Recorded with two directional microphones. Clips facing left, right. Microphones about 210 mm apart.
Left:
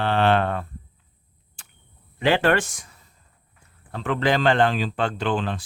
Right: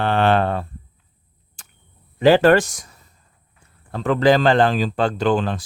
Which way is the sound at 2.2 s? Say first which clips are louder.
Right 7 dB; 40° right (ahead or behind).